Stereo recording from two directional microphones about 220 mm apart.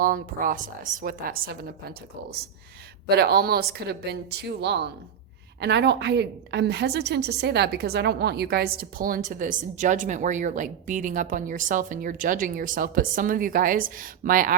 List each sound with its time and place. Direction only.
0.0 s a woman's voice: 40° right (ahead or behind)
3.1 s a woman's voice: 45° right (ahead or behind)